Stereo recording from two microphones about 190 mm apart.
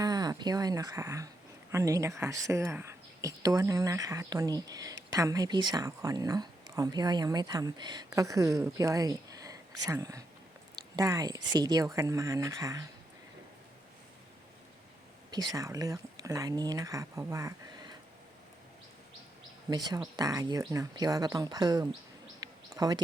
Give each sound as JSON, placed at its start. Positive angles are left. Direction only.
{"t": 0.0, "sound": "speech", "side_deg": -20}
{"t": 15.3, "sound": "speech", "side_deg": -20}
{"t": 19.7, "sound": "speech", "side_deg": -20}
{"t": 22.4, "sound": "bird", "side_deg": -20}